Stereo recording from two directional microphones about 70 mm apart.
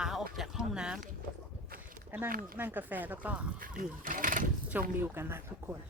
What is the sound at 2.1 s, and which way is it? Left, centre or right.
Speech, right.